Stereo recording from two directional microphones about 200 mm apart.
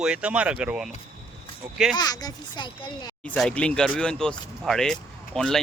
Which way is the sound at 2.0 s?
20° left (ahead or behind).